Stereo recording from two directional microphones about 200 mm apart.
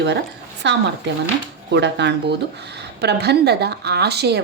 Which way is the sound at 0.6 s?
60° right (ahead or behind).